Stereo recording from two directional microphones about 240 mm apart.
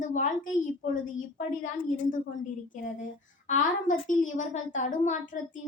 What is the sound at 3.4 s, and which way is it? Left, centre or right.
Speech, left.